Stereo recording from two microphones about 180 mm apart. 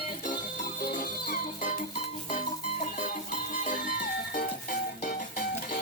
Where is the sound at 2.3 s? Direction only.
40° left (ahead or behind).